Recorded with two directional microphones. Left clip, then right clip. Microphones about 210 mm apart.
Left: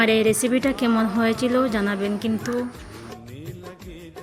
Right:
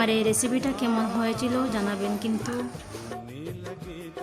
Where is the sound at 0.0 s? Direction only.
20° left (ahead or behind).